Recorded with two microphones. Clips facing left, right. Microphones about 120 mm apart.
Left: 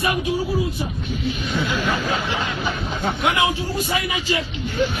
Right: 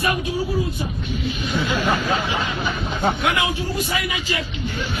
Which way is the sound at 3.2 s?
25° left (ahead or behind).